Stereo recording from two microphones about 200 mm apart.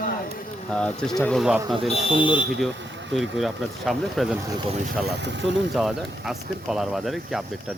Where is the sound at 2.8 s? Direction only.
65° right (ahead or behind).